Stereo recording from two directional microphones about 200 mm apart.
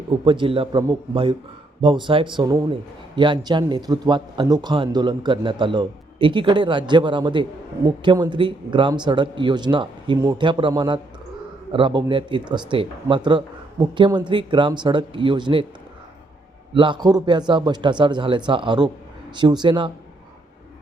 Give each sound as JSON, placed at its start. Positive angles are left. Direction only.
{"t": 0.3, "sound": "speech", "side_deg": -25}
{"t": 16.7, "sound": "speech", "side_deg": -25}